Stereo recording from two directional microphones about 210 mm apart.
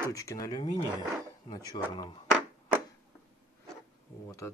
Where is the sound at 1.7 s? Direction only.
20° left (ahead or behind).